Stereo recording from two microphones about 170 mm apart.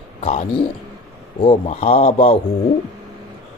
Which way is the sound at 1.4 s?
35° left (ahead or behind).